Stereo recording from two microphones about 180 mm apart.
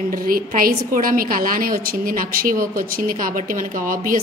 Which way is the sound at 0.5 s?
50° right (ahead or behind).